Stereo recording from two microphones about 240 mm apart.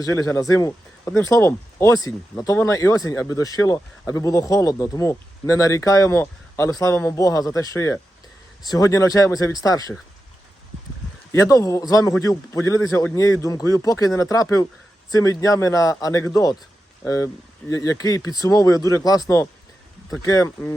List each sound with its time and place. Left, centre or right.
0.0 s speech: centre
11.3 s speech: centre